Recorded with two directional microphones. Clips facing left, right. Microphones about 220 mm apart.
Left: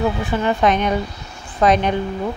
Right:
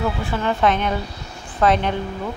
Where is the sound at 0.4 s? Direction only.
15° left (ahead or behind).